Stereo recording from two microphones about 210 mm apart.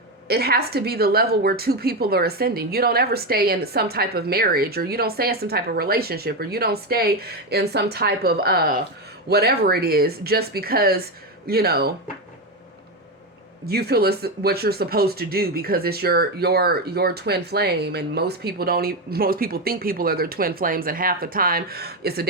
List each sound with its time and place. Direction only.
0.3 s speech: 50° right (ahead or behind)
13.7 s speech: 50° right (ahead or behind)